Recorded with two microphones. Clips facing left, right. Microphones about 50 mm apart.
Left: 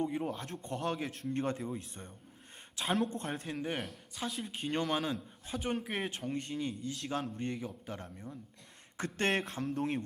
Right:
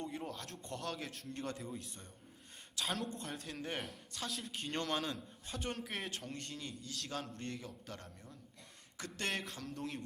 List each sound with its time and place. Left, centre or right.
0.0 s speech: centre
3.2 s speech: left
3.5 s a man's voice: centre
9.0 s speech: left
9.7 s speech: left